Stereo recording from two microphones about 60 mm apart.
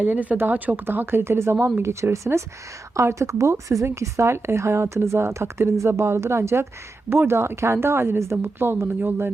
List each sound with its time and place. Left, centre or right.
0.0 s speech: right